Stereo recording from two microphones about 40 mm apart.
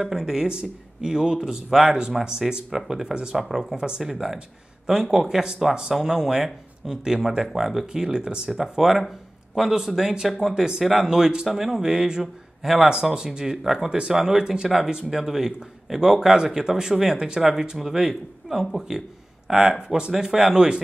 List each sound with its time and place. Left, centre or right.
0.0 s speech: centre
0.5 s speech: right
1.7 s speech: centre
3.7 s speech: right
4.0 s speech: centre
8.5 s speech: centre
10.8 s speech: centre